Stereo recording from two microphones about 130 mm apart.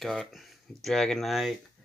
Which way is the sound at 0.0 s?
Centre (ahead or behind).